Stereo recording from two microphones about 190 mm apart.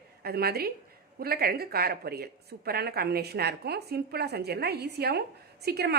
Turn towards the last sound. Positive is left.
turn(degrees=-55)  # may be behind; listen again after turning